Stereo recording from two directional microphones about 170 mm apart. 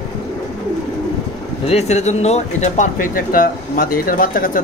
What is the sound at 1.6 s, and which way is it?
Speech, 40° left (ahead or behind).